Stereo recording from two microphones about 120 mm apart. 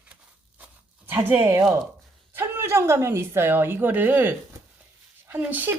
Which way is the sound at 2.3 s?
20° right (ahead or behind).